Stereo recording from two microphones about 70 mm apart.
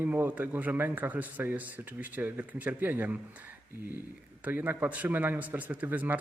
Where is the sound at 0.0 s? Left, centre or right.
Right.